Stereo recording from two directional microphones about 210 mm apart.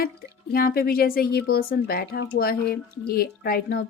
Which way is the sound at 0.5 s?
45° left (ahead or behind).